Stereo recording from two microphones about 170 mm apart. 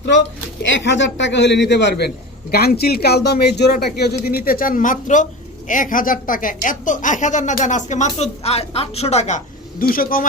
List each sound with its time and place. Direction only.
0.6 s a man's voice: 90° left; by 4.1 s 70° left (ahead or behind)
4.3 s a woman's voice: 60° left (ahead or behind); by 9.8 s 45° left (ahead or behind)
9.8 s speech: 60° left (ahead or behind)